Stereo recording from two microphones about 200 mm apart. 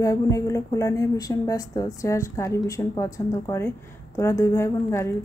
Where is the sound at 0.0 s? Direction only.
15° left (ahead or behind).